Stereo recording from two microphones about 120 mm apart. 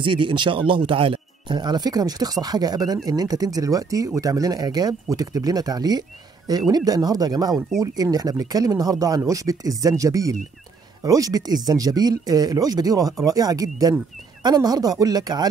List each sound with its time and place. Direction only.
0.0 s speech: 45° right (ahead or behind)